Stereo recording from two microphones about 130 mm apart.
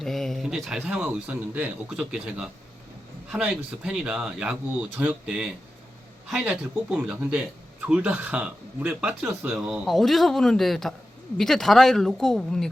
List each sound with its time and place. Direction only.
0.0 s speech: centre (ahead or behind)